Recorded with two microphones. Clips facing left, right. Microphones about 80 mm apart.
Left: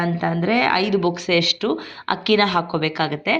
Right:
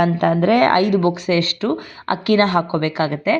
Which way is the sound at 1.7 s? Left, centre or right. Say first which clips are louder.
Right 1 dB; right.